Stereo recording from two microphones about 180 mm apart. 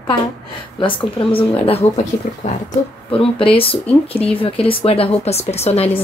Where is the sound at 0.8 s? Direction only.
30° left (ahead or behind).